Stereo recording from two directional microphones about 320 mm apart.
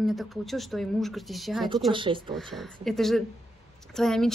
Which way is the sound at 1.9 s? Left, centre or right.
Centre.